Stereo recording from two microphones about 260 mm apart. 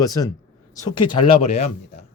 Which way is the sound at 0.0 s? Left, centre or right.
Centre.